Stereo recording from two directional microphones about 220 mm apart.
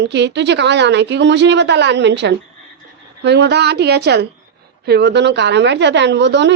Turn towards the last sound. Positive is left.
turn(degrees=-55)  # may be behind; listen again after turning